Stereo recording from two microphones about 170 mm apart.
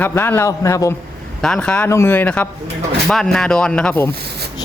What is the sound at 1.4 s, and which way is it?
A man's voice, 5° left (ahead or behind).